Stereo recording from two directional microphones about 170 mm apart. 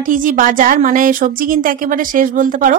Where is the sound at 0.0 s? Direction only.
50° right (ahead or behind).